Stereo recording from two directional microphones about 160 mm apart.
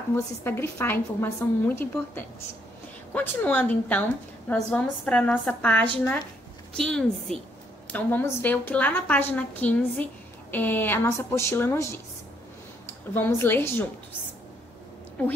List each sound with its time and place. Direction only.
0.1 s a woman's voice: 15° left (ahead or behind)
13.1 s a woman's voice: 15° left (ahead or behind)